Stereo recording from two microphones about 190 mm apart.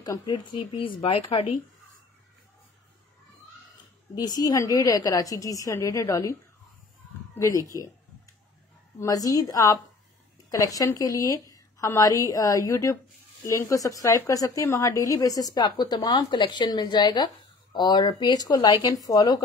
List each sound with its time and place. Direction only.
0.0 s speech: 20° left (ahead or behind)
4.2 s a woman's voice: 20° left (ahead or behind)
7.3 s speech: 15° left (ahead or behind)
9.0 s a woman's voice: 20° left (ahead or behind)